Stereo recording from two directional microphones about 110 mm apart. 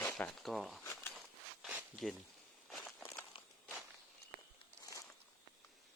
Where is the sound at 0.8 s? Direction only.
25° left (ahead or behind).